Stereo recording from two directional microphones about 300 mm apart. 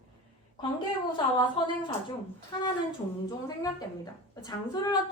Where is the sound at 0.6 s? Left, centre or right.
Centre.